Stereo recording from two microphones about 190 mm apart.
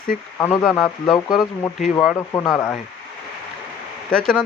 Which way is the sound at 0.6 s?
Centre (ahead or behind).